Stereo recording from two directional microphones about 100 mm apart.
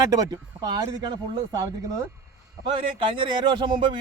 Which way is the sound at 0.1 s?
40° right (ahead or behind).